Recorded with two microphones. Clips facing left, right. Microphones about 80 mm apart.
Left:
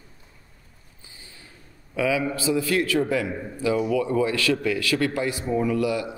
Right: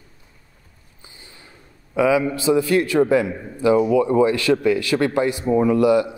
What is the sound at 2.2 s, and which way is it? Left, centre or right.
Speech, right.